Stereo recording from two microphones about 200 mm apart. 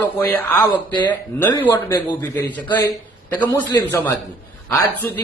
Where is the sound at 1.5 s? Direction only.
15° left (ahead or behind).